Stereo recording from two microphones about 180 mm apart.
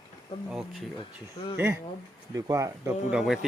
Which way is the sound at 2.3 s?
20° right (ahead or behind).